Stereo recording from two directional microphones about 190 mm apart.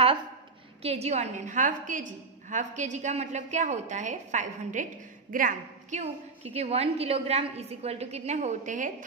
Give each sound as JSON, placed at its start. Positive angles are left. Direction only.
{"t": 0.8, "sound": "a woman's voice", "side_deg": -35}